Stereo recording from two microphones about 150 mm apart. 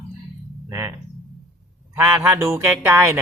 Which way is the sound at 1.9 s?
10° right (ahead or behind).